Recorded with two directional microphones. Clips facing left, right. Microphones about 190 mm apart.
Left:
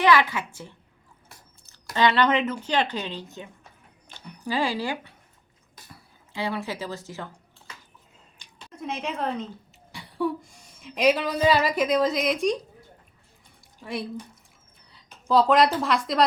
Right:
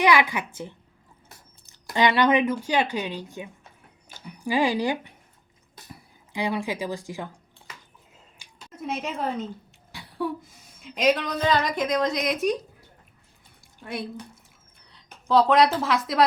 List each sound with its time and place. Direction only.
0.0 s speech: 15° right (ahead or behind)
8.4 s a woman's voice: 5° right (ahead or behind)
13.8 s a woman's voice: centre (ahead or behind)